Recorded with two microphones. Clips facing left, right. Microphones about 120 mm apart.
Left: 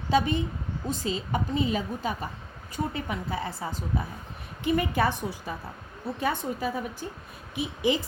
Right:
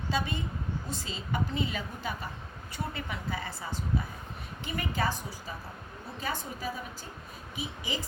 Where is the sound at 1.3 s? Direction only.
45° left (ahead or behind).